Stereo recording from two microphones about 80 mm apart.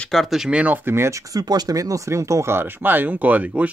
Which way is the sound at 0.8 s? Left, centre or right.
Right.